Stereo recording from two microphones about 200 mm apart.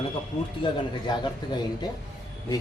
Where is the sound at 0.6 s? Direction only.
20° left (ahead or behind).